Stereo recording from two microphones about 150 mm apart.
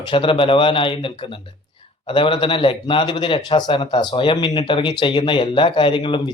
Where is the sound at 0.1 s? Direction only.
35° left (ahead or behind).